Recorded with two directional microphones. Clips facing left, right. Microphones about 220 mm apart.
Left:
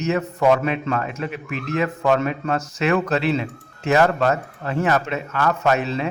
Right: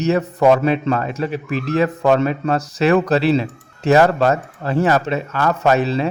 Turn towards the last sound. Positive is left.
turn(degrees=-35)  # may be behind; listen again after turning